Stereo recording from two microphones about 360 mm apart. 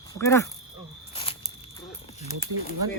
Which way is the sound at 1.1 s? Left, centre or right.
Centre.